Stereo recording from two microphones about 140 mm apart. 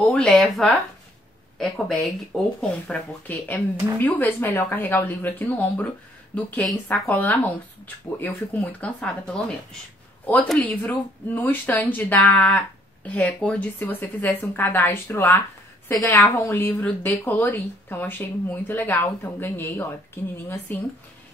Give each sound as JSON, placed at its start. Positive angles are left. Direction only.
{"t": 0.0, "sound": "speech", "side_deg": 10}